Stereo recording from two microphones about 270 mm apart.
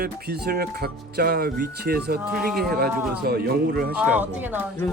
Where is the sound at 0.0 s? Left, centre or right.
Right.